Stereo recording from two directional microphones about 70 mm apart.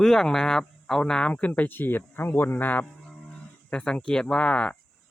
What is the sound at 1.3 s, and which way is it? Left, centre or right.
Speech, left.